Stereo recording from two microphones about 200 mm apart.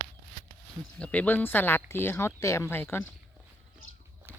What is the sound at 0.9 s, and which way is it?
Speech, 5° left (ahead or behind).